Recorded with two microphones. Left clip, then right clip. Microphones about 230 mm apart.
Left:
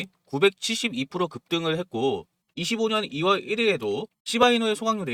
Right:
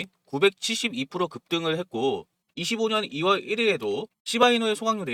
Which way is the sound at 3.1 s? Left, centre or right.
Centre.